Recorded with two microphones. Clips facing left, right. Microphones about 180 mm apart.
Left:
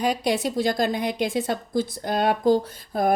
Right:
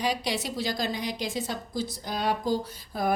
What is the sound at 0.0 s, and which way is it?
A woman's voice, 50° left (ahead or behind).